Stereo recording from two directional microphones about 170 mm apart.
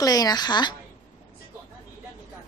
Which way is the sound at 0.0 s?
20° left (ahead or behind).